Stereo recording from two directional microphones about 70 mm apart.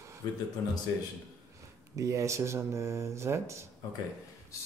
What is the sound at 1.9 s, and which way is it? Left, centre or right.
Speech, right.